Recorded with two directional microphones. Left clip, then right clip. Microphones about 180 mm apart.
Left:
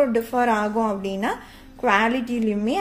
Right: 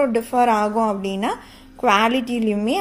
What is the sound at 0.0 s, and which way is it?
A woman's voice, 25° right (ahead or behind).